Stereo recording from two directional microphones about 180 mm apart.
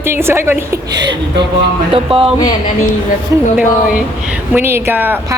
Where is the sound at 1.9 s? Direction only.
30° right (ahead or behind).